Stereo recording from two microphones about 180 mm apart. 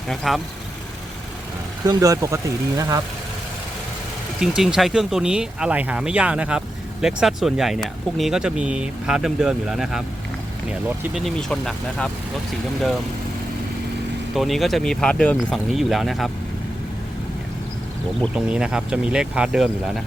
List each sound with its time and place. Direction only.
0.1 s speech: centre (ahead or behind)
1.9 s speech: 20° right (ahead or behind)
4.4 s speech: 5° right (ahead or behind)
11.3 s speech: 5° left (ahead or behind)
14.3 s speech: centre (ahead or behind)
18.3 s speech: 5° right (ahead or behind)